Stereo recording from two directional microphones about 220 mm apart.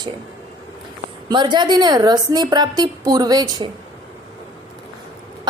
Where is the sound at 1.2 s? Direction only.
20° right (ahead or behind).